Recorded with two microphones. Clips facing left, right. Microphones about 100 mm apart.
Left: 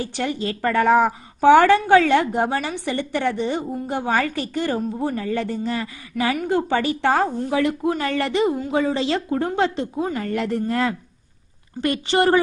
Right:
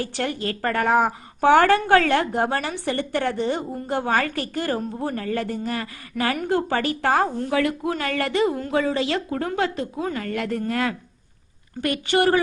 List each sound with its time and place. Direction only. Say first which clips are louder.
0.0 s a woman's voice: left 1 dB; 20° left (ahead or behind)